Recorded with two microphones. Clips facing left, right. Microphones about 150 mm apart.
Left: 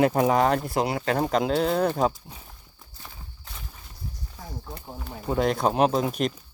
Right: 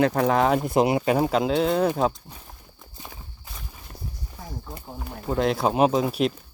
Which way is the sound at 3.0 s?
20° right (ahead or behind).